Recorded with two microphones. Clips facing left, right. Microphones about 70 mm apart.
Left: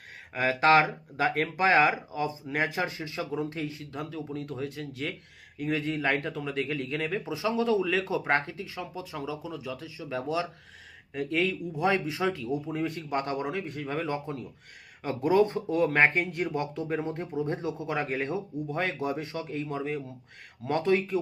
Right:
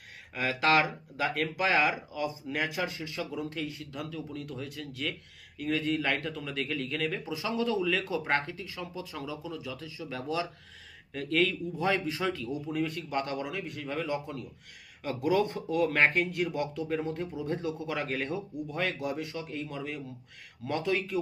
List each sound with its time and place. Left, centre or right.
0.3 s speech: left